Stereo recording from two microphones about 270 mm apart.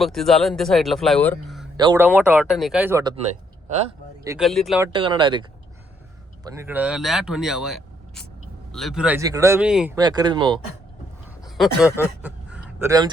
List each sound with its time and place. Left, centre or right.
0.0 s speech: centre
1.7 s speech: centre
4.4 s speech: centre
4.9 s speech: centre
10.0 s speech: centre
11.4 s a sound: centre
11.8 s speech: centre